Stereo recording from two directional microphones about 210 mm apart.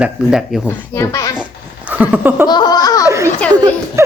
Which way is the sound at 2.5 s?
20° left (ahead or behind).